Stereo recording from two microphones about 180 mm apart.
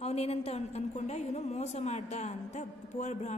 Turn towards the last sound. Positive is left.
turn(degrees=40)  # may be behind; listen again after turning